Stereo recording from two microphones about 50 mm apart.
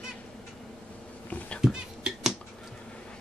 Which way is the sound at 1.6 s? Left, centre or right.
Centre.